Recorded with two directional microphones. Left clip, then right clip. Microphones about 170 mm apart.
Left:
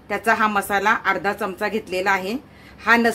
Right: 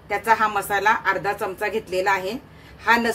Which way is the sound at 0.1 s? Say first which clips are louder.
Left 1 dB; 40° left (ahead or behind).